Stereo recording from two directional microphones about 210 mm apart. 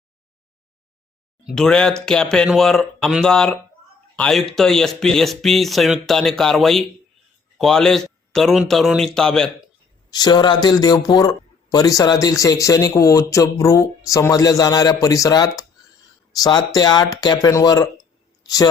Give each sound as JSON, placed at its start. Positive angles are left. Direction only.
{"t": 1.5, "sound": "speech", "side_deg": 0}
{"t": 10.1, "sound": "a man's voice", "side_deg": 20}